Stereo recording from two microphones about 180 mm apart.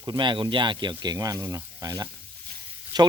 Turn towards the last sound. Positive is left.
turn(degrees=-20)  # may be behind; listen again after turning